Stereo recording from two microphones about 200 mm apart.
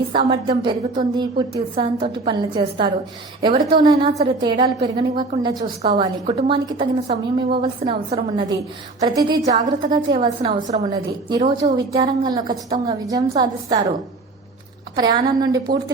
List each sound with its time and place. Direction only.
0.1 s a woman's voice: 25° right (ahead or behind)
10.2 s a woman's voice: 30° right (ahead or behind)
14.9 s a woman's voice: 20° right (ahead or behind)